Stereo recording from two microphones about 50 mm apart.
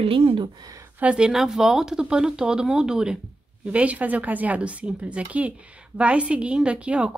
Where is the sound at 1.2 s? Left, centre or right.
Centre.